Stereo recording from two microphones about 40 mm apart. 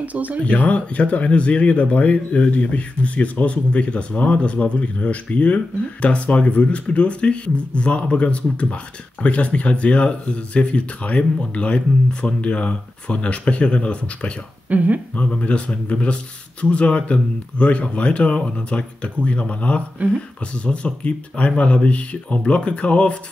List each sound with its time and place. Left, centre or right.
0.0 s speech: right
0.4 s speech: left
14.7 s speech: right
15.1 s speech: left